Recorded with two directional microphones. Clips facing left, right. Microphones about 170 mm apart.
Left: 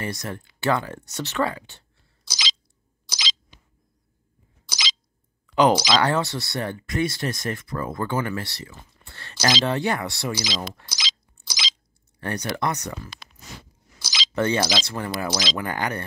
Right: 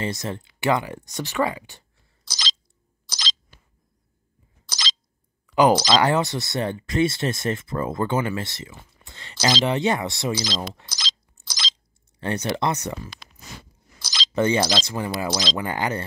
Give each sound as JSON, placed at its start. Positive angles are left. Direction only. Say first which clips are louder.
{"t": 0.0, "sound": "speech", "louder": "right 3 dB", "side_deg": -25}
{"t": 2.2, "sound": "a sound", "louder": "even", "side_deg": 5}
{"t": 3.1, "sound": "squeak", "louder": "even", "side_deg": 5}
{"t": 4.6, "sound": "squeak", "louder": "even", "side_deg": 0}
{"t": 5.5, "sound": "speech", "louder": "right 1 dB", "side_deg": -10}
{"t": 10.9, "sound": "a sound", "louder": "even", "side_deg": 5}
{"t": 12.2, "sound": "speech", "louder": "right 2 dB", "side_deg": -20}
{"t": 14.0, "sound": "a sound", "louder": "even", "side_deg": 0}
{"t": 14.3, "sound": "speech", "louder": "right 2 dB", "side_deg": -15}
{"t": 14.6, "sound": "speech", "louder": "right 2 dB", "side_deg": 0}
{"t": 15.5, "sound": "speech", "louder": "right 2 dB", "side_deg": -15}